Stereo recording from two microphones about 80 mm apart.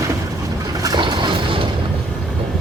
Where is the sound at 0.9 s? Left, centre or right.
Right.